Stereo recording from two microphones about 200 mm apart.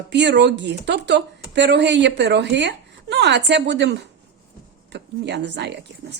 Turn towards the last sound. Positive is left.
turn(degrees=-60)  # may be behind; listen again after turning